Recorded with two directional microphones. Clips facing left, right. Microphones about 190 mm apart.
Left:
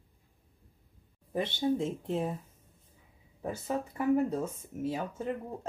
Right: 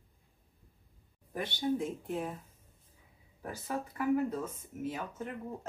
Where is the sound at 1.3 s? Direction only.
25° left (ahead or behind).